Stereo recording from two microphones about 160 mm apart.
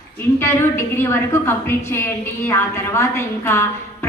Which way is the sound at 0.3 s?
15° left (ahead or behind).